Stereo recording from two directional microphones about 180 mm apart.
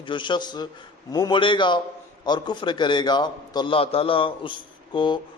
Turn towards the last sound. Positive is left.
turn(degrees=25)  # may be behind; listen again after turning